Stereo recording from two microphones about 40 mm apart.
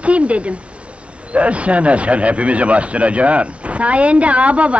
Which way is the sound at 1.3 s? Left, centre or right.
Right.